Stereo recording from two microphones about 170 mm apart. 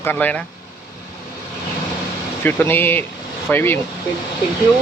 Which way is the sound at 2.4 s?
10° left (ahead or behind).